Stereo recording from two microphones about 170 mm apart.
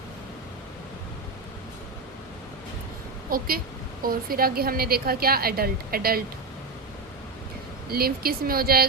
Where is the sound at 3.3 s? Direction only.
60° right (ahead or behind).